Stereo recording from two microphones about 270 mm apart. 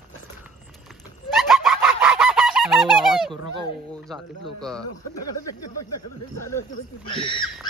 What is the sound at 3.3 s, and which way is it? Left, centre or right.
Speech, centre.